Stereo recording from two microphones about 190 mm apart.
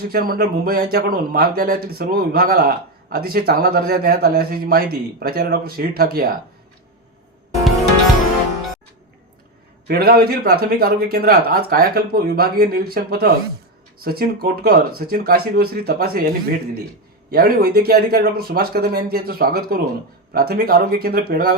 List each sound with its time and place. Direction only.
0.1 s speech: 55° right (ahead or behind)
9.8 s speech: 55° right (ahead or behind)